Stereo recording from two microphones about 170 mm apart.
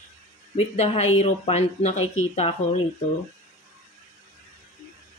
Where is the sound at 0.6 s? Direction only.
40° left (ahead or behind).